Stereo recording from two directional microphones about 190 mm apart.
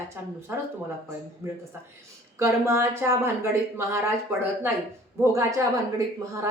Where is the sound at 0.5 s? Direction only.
15° right (ahead or behind).